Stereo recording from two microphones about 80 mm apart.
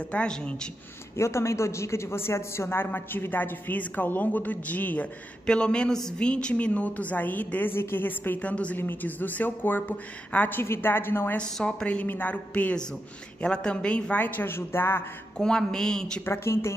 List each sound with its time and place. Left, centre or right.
0.1 s a woman's voice: centre
1.1 s a woman's voice: left
11.3 s a woman's voice: centre
15.3 s a woman's voice: centre
16.3 s a woman's voice: left